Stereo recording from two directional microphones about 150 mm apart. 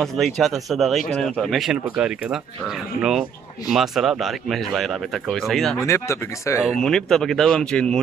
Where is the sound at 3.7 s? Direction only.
Centre (ahead or behind).